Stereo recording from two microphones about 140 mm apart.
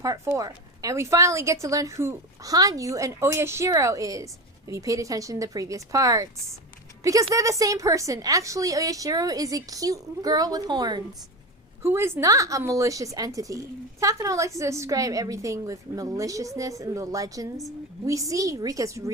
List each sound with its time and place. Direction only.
0.0 s a woman's voice: 25° right (ahead or behind)
11.8 s a woman's voice: 20° right (ahead or behind)